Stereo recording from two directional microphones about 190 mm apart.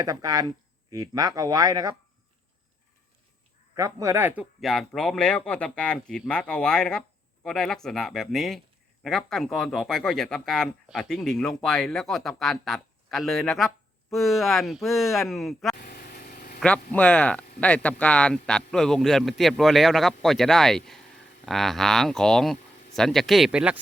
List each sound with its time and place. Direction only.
0.0 s speech: 20° right (ahead or behind)
3.8 s speech: 20° right (ahead or behind); by 15.7 s centre (ahead or behind)
15.7 s vehicle: 50° left (ahead or behind)
16.6 s speech: 5° left (ahead or behind)